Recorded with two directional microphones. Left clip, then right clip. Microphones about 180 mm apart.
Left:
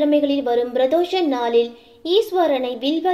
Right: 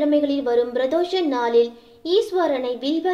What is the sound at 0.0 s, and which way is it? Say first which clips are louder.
A woman's voice: left 2 dB; 25° left (ahead or behind).